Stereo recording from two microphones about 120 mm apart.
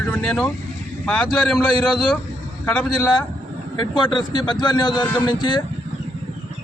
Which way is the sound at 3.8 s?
40° left (ahead or behind).